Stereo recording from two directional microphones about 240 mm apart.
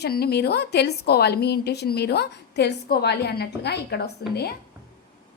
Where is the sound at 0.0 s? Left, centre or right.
Left.